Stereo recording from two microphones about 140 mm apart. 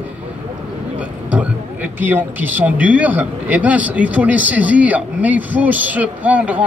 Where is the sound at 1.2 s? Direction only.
10° right (ahead or behind).